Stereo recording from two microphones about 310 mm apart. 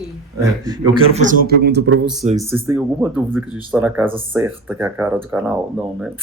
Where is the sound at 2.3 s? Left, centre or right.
Centre.